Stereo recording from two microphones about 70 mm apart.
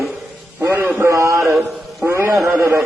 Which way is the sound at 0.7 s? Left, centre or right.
Right.